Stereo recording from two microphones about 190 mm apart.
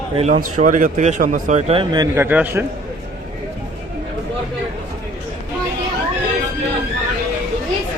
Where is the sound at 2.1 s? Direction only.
10° right (ahead or behind).